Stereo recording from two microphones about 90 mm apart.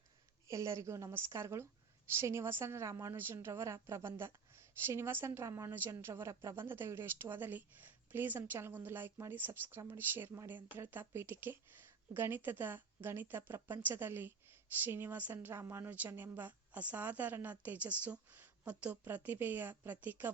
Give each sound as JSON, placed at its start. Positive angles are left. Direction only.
{"t": 0.4, "sound": "a woman's voice", "side_deg": -35}